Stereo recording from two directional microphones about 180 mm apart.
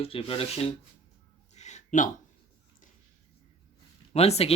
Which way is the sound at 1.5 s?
40° left (ahead or behind).